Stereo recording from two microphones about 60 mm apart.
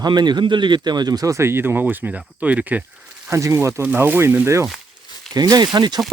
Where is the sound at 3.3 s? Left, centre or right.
Right.